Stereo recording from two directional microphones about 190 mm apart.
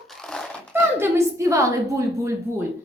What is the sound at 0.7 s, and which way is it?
A woman's voice, 10° right (ahead or behind).